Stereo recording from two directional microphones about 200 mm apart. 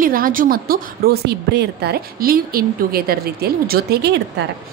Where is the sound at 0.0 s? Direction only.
45° right (ahead or behind).